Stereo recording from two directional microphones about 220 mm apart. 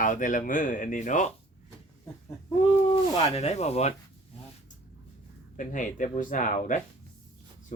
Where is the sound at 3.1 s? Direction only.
30° left (ahead or behind).